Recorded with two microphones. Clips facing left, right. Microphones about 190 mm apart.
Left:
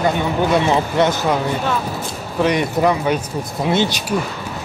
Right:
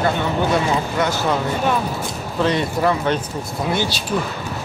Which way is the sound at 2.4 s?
15° left (ahead or behind).